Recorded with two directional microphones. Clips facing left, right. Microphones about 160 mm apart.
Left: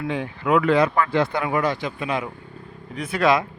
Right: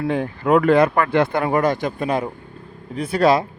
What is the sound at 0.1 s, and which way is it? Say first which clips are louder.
Speech: right 3 dB; 45° right (ahead or behind).